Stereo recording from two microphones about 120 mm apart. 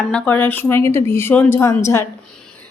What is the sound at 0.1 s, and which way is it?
A woman's voice, 15° left (ahead or behind).